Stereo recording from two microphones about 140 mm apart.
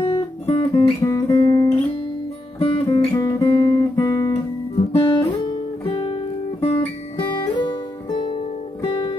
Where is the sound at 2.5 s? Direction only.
40° left (ahead or behind).